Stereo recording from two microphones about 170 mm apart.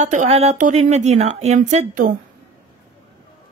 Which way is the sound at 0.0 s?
45° right (ahead or behind).